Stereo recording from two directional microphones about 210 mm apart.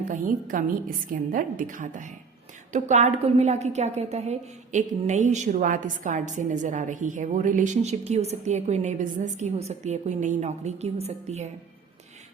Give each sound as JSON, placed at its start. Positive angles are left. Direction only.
{"t": 0.1, "sound": "a woman's voice", "side_deg": -40}